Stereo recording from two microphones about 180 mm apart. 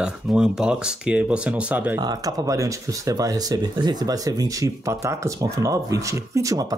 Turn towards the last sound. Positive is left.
turn(degrees=-20)  # may be behind; listen again after turning